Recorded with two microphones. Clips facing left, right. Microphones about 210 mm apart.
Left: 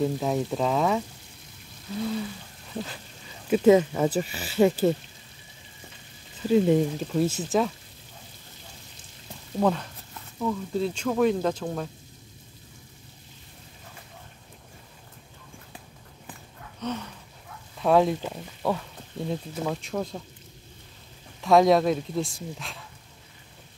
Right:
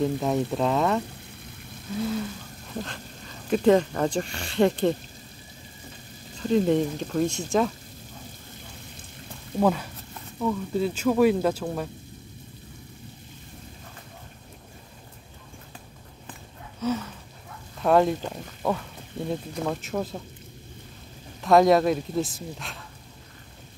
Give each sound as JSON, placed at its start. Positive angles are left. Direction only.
{"t": 0.0, "sound": "speech", "side_deg": 0}
{"t": 3.4, "sound": "speech", "side_deg": 5}
{"t": 6.4, "sound": "speech", "side_deg": 5}
{"t": 9.6, "sound": "speech", "side_deg": -5}
{"t": 16.8, "sound": "a sound", "side_deg": -5}
{"t": 19.2, "sound": "speech", "side_deg": 0}
{"t": 21.4, "sound": "speech", "side_deg": 0}